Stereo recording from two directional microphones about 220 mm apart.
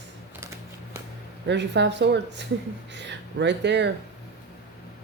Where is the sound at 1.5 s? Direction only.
55° right (ahead or behind).